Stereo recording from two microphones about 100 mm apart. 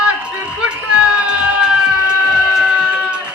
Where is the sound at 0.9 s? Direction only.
10° right (ahead or behind).